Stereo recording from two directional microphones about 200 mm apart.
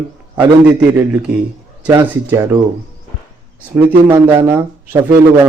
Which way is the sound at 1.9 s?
15° right (ahead or behind).